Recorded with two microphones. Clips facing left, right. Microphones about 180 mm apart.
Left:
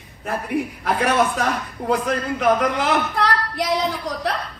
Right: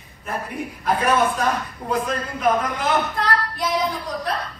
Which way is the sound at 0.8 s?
80° left.